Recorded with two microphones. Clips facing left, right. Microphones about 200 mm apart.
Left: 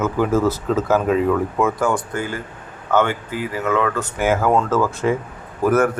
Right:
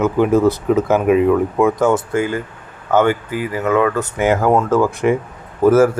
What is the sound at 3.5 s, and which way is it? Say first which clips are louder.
Speech: right 4 dB; 10° right (ahead or behind).